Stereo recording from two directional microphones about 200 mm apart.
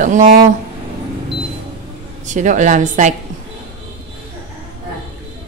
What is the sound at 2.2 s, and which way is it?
Speech, 40° right (ahead or behind).